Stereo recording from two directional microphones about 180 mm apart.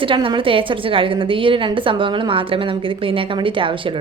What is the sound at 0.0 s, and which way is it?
A woman's voice, 30° right (ahead or behind).